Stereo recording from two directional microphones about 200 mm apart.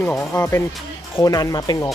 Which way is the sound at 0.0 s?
5° left (ahead or behind).